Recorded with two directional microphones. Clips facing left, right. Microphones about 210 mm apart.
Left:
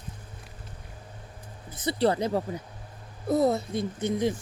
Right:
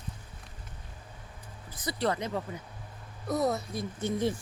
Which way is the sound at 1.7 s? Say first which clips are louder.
Left 6 dB; 30° left (ahead or behind).